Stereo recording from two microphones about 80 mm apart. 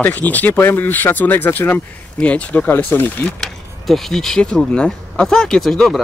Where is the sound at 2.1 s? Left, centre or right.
Centre.